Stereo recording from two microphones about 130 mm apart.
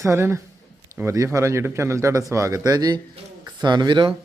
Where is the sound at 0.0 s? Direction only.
20° right (ahead or behind).